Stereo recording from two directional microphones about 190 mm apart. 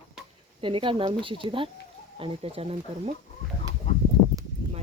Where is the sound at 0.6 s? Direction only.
25° right (ahead or behind).